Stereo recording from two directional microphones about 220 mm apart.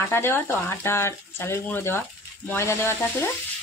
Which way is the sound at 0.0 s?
10° left (ahead or behind).